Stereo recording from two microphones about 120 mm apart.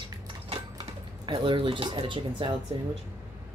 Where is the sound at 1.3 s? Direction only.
45° right (ahead or behind).